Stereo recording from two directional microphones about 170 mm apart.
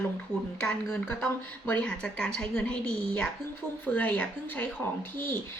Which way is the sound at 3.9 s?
10° left (ahead or behind).